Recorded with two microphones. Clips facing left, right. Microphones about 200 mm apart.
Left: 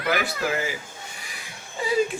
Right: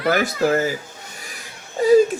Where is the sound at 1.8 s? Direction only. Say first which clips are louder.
Right 12 dB; 45° right (ahead or behind).